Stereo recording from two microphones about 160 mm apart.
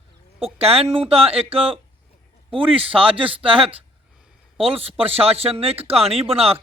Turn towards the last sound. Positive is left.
turn(degrees=-40)  # may be behind; listen again after turning